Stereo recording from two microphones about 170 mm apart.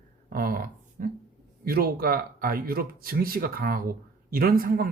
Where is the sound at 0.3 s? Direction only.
55° right (ahead or behind).